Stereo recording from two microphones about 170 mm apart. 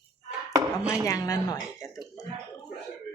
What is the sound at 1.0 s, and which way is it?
Speech, 20° left (ahead or behind).